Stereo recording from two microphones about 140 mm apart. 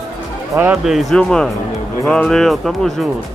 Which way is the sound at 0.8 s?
Centre (ahead or behind).